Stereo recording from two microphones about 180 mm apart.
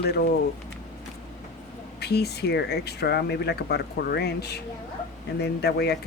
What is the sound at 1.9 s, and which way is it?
Speech, 65° left (ahead or behind).